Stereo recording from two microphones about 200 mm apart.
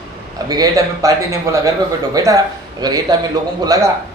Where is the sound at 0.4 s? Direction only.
20° right (ahead or behind).